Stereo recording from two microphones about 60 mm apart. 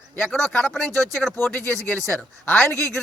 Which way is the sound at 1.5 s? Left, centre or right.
Left.